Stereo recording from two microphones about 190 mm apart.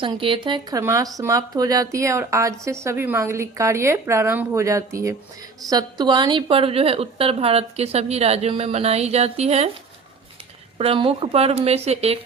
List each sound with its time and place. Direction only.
0.0 s speech: 25° right (ahead or behind)
0.8 s a woman's voice: 15° right (ahead or behind); by 9.6 s 35° right (ahead or behind)
10.8 s a woman's voice: 30° right (ahead or behind)